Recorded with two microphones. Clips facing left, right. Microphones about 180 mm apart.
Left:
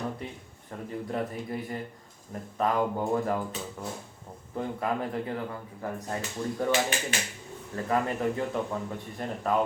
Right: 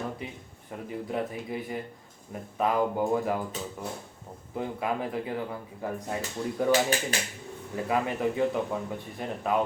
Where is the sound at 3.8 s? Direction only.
5° right (ahead or behind).